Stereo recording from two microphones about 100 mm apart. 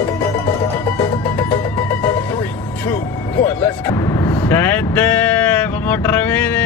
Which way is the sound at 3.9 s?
35° left (ahead or behind).